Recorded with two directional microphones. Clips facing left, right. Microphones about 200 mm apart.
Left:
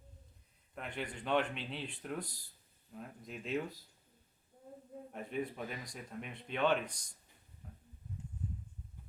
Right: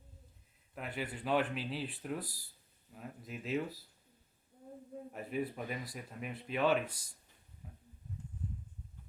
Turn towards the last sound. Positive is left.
turn(degrees=-5)  # may be behind; listen again after turning